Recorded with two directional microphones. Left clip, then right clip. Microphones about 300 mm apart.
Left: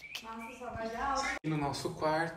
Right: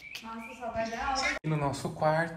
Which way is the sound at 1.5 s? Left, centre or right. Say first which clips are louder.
Right 2 dB; centre.